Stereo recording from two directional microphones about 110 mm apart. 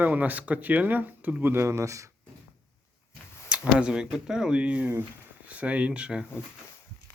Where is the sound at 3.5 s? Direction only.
10° right (ahead or behind).